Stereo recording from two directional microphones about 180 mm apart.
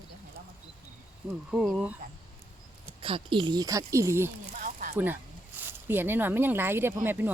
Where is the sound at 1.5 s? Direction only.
Centre (ahead or behind).